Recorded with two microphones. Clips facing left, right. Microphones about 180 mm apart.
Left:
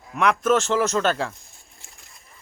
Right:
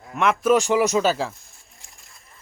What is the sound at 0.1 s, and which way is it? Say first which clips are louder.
Speech: right 1 dB; centre (ahead or behind).